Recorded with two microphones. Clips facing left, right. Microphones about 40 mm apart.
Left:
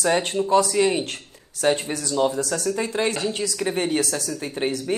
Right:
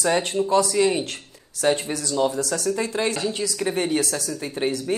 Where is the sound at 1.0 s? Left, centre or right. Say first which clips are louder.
Left 1 dB; left.